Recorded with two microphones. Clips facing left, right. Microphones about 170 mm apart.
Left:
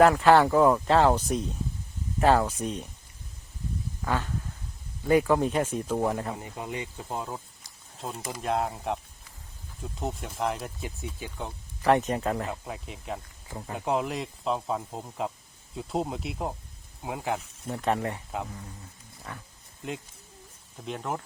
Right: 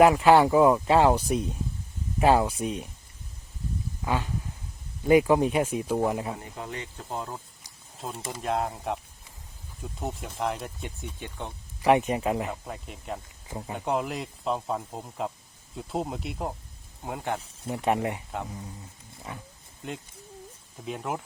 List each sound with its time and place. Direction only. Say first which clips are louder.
0.0 s speech: right 1 dB; 10° right (ahead or behind)
4.0 s speech: right 1 dB; 15° right (ahead or behind)
6.3 s speech: left 1 dB; 15° left (ahead or behind)
11.8 s speech: right 1 dB; 15° right (ahead or behind)
12.5 s speech: even; centre (ahead or behind)
13.5 s speech: right 2 dB; 10° right (ahead or behind)
13.7 s speech: left 1 dB; centre (ahead or behind)
17.7 s speech: right 2 dB; 10° right (ahead or behind)
19.3 s speech: right 2 dB; 15° right (ahead or behind)
20.8 s speech: even; 5° right (ahead or behind)